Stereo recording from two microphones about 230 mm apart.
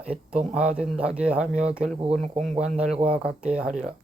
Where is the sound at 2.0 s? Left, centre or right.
Right.